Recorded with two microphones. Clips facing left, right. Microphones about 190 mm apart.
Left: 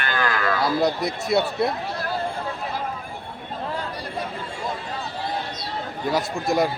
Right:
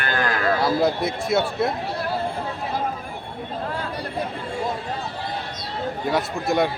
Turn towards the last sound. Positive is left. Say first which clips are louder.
# even
turn(degrees=0)  # may be behind; listen again after turning